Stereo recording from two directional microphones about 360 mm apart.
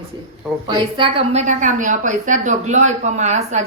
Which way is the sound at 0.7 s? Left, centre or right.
Centre.